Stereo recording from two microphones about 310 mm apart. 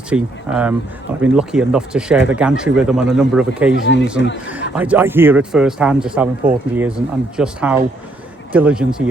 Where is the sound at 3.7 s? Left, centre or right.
Left.